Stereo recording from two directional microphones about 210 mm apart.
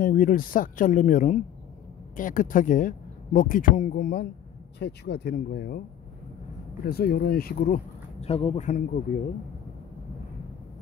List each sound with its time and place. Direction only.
0.0 s speech: 45° left (ahead or behind)
6.9 s speech: 50° left (ahead or behind)